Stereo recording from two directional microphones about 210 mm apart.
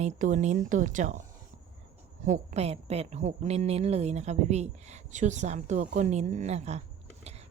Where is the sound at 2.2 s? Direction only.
35° right (ahead or behind).